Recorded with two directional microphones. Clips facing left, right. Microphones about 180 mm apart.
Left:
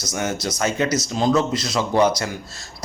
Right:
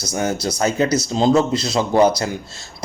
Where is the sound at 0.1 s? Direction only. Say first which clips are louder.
Right 4 dB; 35° right (ahead or behind).